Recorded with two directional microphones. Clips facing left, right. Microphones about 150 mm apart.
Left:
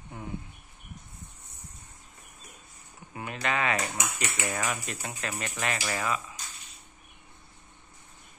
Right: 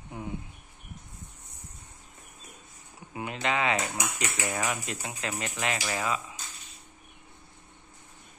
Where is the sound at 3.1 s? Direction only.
20° right (ahead or behind).